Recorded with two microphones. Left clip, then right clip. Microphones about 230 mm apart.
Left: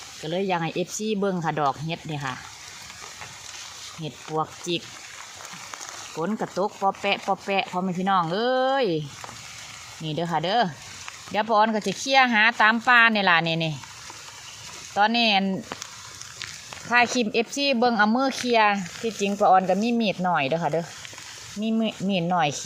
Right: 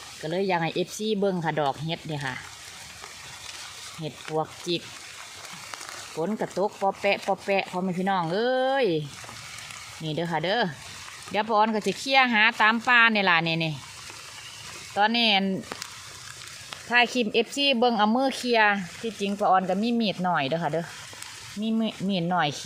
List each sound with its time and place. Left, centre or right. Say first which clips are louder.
0.2 s speech: even; centre
4.0 s speech: left 1 dB; centre
6.1 s speech: left 1 dB; centre
10.0 s speech: left 2 dB; centre
14.9 s speech: left 2 dB; centre
16.9 s speech: left 1 dB; centre